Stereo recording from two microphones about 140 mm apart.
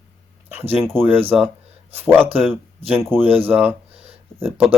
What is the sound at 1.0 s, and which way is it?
Speech, 15° right (ahead or behind).